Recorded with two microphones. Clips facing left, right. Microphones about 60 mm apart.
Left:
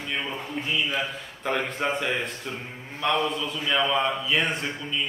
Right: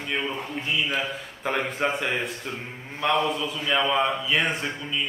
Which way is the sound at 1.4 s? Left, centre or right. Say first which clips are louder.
Right 1 dB; centre.